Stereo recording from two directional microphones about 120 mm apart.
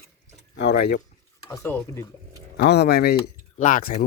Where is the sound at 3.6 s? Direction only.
90° left.